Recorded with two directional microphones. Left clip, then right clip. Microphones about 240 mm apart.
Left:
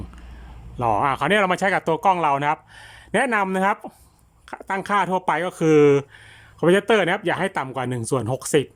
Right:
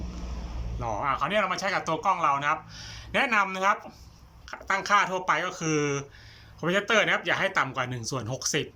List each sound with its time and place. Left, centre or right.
0.8 s speech: left